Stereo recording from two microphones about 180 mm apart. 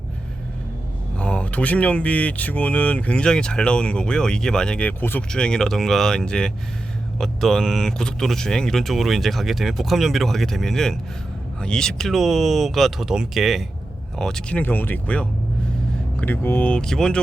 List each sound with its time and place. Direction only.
1.2 s speech: 5° left (ahead or behind)